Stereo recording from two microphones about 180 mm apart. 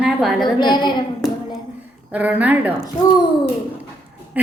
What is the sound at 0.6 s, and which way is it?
Speech, 25° left (ahead or behind).